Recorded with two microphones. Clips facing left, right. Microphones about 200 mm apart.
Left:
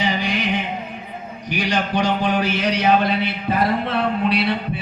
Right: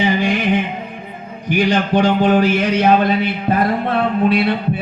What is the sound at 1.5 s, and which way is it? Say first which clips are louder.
Speech: right 7 dB; 55° right (ahead or behind).